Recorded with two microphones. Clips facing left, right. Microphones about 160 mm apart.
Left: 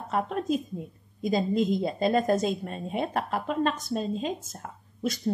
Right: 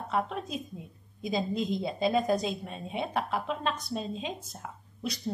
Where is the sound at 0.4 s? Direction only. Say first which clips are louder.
Left 9 dB; centre (ahead or behind).